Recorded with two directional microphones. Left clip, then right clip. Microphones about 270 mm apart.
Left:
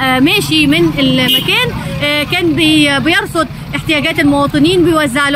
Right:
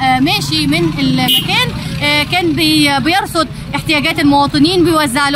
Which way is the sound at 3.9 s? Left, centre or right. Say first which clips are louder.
Even; centre.